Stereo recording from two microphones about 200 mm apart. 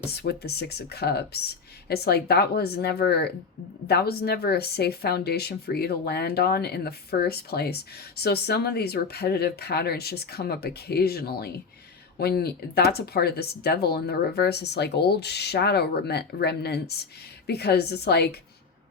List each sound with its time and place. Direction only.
0.1 s a woman's voice: 55° left (ahead or behind)